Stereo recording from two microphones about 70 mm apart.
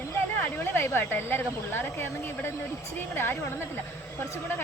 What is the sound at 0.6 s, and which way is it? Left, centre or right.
Speech, left.